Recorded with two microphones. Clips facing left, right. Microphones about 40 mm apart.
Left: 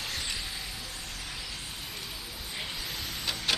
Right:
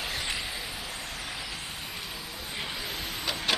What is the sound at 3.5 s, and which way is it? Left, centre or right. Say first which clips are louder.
Wood: right 2 dB; centre.